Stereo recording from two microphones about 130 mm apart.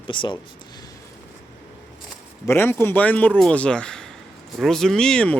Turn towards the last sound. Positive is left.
turn(degrees=10)  # may be behind; listen again after turning